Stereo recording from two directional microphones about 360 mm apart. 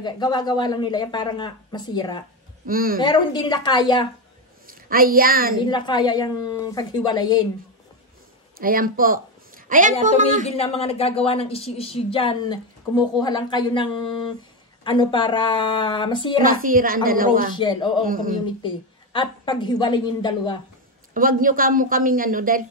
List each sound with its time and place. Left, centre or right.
0.0 s a woman's voice: centre
2.6 s speech: right
3.0 s a woman's voice: centre
4.6 s a woman's voice: right
5.7 s a woman's voice: centre
8.5 s a woman's voice: right
10.4 s a woman's voice: centre
16.4 s speech: right
17.6 s a woman's voice: centre
18.0 s speech: right
19.1 s a woman's voice: centre
21.1 s speech: right